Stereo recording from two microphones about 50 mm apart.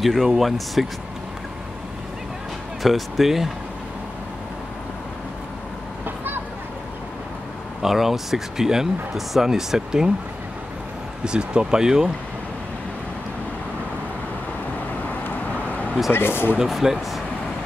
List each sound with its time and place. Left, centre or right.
0.0 s speech: centre
2.8 s speech: centre
6.0 s a sound: right
7.8 s speech: centre
11.2 s speech: centre
15.2 s vehicle: left
16.1 s speech: left
16.5 s speech: centre